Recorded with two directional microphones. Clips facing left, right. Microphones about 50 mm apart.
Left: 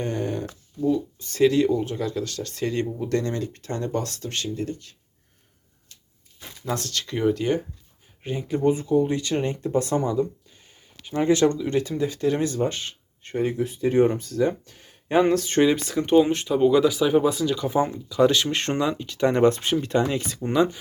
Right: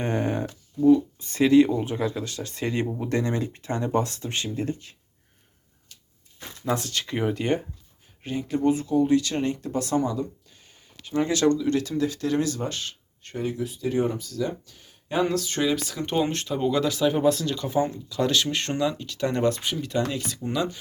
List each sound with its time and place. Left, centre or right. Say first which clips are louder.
0.0 s a sound: right 1 dB; right
1.2 s speech: right 1 dB; centre
6.7 s speech: right 1 dB; centre
8.2 s speech: left 1 dB; centre; by 16.0 s left
16.1 s speech: left 7 dB; centre
17.7 s speech: left 4 dB; left